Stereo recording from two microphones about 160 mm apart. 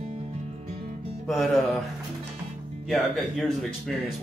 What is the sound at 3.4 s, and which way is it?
Speech, centre (ahead or behind).